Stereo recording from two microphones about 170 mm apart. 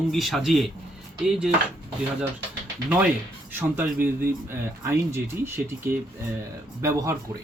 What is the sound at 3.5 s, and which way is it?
Speech, 10° right (ahead or behind).